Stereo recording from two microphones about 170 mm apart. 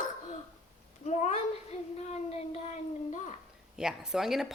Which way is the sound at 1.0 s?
40° left (ahead or behind).